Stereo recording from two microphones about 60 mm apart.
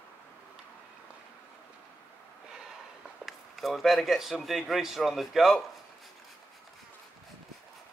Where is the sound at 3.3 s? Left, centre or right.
Centre.